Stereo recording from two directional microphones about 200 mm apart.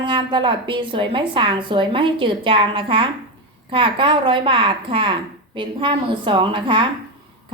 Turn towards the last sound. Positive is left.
turn(degrees=-25)  # may be behind; listen again after turning